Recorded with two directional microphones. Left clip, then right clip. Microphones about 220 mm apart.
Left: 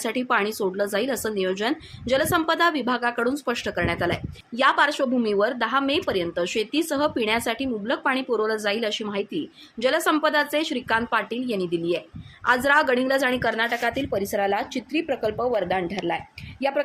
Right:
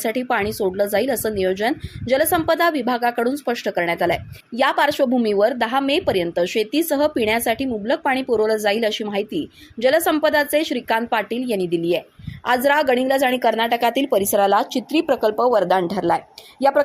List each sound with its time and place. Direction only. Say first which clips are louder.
0.0 s a woman's voice: right 2 dB; 15° right (ahead or behind)